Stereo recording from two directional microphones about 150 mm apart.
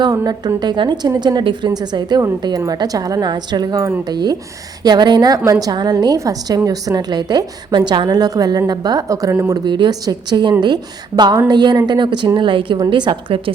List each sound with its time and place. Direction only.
0.0 s a woman's voice: 25° right (ahead or behind)